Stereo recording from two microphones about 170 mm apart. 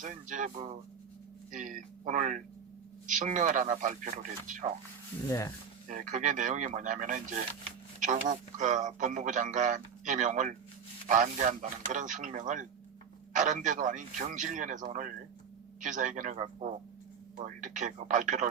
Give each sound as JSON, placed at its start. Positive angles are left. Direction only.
{"t": 0.0, "sound": "a man's voice", "side_deg": -50}
{"t": 5.3, "sound": "speech", "side_deg": 20}
{"t": 5.9, "sound": "a man's voice", "side_deg": -50}